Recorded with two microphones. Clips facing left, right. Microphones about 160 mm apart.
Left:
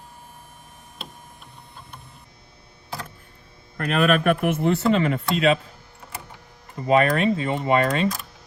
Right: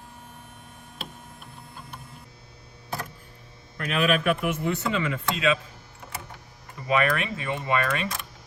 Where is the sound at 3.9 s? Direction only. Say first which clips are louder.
Left 4 dB; 45° left (ahead or behind).